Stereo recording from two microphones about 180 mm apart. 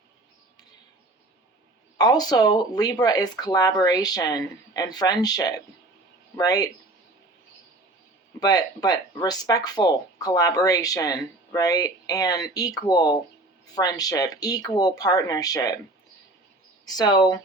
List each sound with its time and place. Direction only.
2.0 s speech: 20° left (ahead or behind)
8.4 s speech: 20° left (ahead or behind)
16.8 s speech: 20° left (ahead or behind)